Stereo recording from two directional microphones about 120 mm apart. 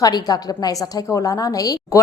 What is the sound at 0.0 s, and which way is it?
A woman's voice, 35° left (ahead or behind).